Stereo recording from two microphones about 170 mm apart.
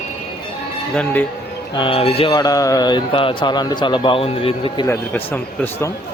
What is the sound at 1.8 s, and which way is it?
Speech, 35° left (ahead or behind).